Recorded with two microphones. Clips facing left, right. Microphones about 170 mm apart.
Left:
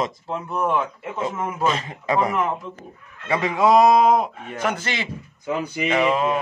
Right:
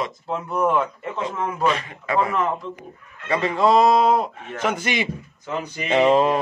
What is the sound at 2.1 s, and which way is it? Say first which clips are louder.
Speech: even; 15° left (ahead or behind).